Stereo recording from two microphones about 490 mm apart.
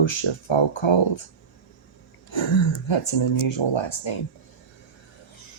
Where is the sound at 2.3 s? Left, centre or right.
Left.